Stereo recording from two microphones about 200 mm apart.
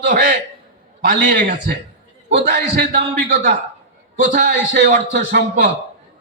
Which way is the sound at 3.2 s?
40° right (ahead or behind).